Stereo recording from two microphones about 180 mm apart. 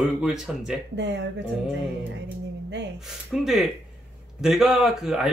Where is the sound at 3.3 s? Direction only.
Centre (ahead or behind).